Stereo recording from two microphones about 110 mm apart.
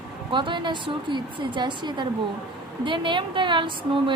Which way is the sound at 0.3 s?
45° right (ahead or behind).